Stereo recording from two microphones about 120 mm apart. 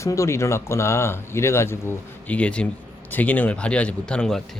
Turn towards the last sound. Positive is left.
turn(degrees=5)  # may be behind; listen again after turning